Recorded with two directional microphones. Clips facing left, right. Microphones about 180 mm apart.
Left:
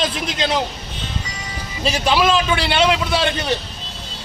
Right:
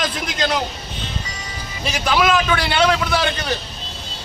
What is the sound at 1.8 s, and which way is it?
A man's voice, 30° left (ahead or behind).